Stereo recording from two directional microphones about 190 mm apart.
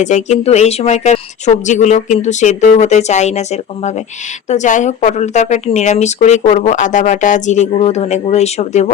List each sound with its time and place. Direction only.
0.0 s a woman's voice: 40° left (ahead or behind)